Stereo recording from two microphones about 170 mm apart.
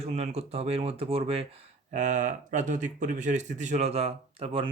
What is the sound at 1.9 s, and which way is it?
Speech, 45° right (ahead or behind).